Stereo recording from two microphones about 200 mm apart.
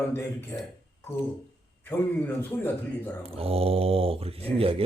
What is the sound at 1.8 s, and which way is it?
A man's voice, 10° left (ahead or behind).